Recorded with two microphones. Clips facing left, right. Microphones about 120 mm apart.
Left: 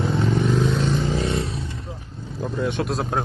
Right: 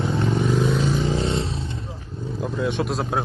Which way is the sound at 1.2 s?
25° right (ahead or behind).